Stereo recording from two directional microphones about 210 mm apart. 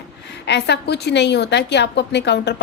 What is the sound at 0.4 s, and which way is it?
A woman's voice, 55° left (ahead or behind).